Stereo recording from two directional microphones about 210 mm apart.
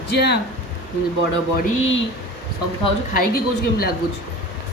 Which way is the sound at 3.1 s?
45° left (ahead or behind).